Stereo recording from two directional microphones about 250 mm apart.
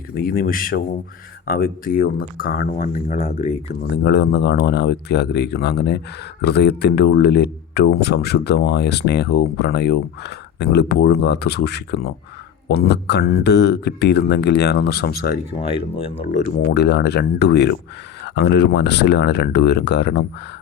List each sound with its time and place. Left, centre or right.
0.1 s speech: left
3.9 s speech: left
15.5 s speech: left